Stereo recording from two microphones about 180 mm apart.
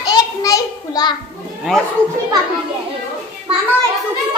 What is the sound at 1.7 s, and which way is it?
Speech, centre (ahead or behind).